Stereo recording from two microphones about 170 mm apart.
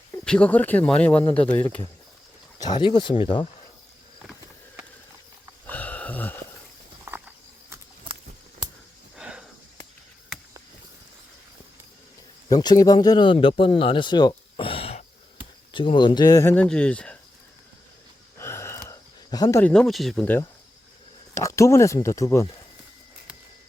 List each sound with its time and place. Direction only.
0.1 s speech: 10° left (ahead or behind)
2.6 s speech: 25° left (ahead or behind)
5.6 s a sound: 10° left (ahead or behind)
7.0 s cricket: 15° right (ahead or behind)
9.1 s sniff: 5° right (ahead or behind)
12.5 s speech: 25° left (ahead or behind); by 17.2 s 5° left (ahead or behind)
18.3 s gasp: 15° left (ahead or behind)
19.7 s speech: 5° left (ahead or behind); by 22.4 s 20° left (ahead or behind)